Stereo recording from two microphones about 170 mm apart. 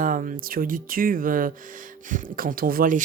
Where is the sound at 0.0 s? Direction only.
55° right (ahead or behind).